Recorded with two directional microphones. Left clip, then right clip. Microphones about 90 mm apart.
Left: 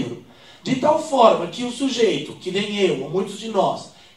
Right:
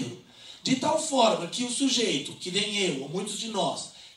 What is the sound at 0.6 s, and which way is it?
A man's voice, 25° right (ahead or behind).